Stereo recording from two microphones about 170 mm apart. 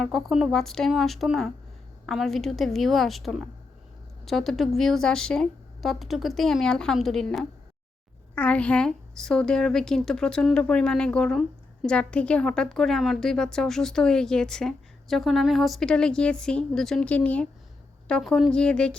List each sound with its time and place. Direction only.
0.0 s a woman's voice: centre (ahead or behind)